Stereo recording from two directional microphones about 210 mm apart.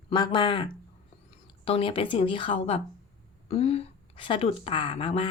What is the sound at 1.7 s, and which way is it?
Speech, 25° left (ahead or behind).